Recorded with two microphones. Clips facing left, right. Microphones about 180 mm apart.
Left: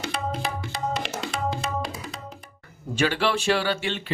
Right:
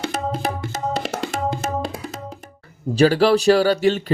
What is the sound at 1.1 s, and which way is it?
Music, 60° right (ahead or behind).